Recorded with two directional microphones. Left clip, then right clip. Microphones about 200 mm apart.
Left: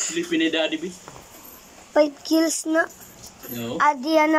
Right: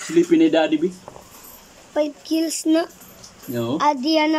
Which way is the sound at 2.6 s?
10° right (ahead or behind).